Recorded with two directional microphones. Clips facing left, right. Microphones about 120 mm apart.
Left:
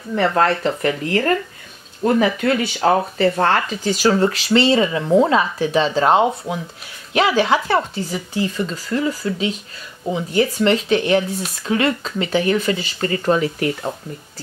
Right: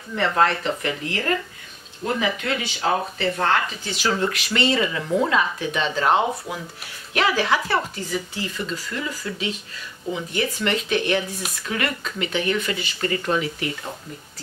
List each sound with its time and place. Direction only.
0.2 s speech: 40° left (ahead or behind)